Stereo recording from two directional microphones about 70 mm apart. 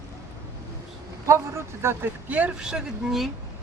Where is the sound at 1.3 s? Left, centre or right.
Right.